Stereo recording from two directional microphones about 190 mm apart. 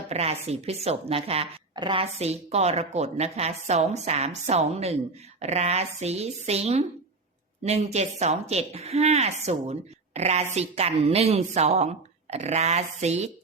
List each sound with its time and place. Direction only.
0.1 s a woman's voice: 35° right (ahead or behind)